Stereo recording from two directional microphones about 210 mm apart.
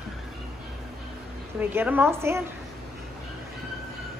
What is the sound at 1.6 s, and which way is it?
Speech, 10° right (ahead or behind).